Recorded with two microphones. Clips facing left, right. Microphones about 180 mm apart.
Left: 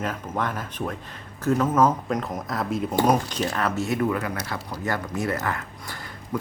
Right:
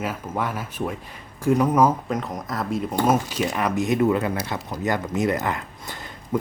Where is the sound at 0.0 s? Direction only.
10° right (ahead or behind).